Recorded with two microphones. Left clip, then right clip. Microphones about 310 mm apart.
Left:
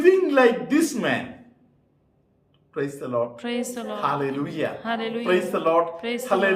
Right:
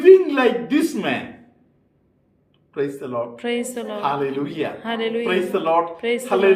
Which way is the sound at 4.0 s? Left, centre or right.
Centre.